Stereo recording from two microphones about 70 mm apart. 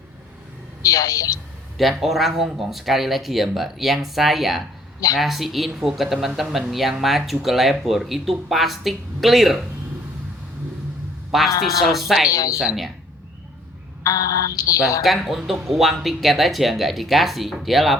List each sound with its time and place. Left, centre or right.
0.8 s speech: left
1.8 s speech: centre
11.3 s a man's voice: centre
12.3 s speech: left
12.5 s speech: centre
14.0 s speech: left
15.0 s speech: centre